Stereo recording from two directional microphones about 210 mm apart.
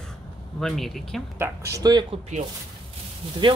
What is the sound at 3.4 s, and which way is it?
Speech, 25° right (ahead or behind).